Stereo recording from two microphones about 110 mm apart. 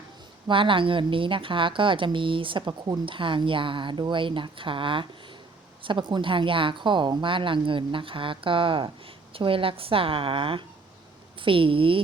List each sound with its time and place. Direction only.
0.4 s a woman's voice: 50° right (ahead or behind)